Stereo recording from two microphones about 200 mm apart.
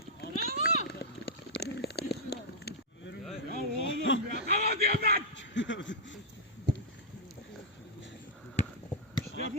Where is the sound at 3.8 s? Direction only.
70° left (ahead or behind).